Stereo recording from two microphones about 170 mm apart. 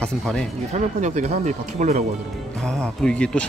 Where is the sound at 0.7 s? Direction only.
45° right (ahead or behind).